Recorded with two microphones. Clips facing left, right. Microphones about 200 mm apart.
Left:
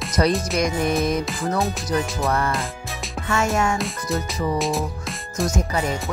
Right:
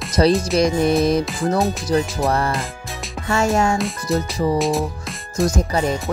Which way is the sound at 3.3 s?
35° right (ahead or behind).